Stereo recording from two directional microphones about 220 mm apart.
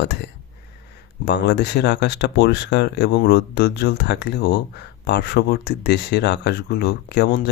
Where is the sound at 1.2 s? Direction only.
50° left (ahead or behind).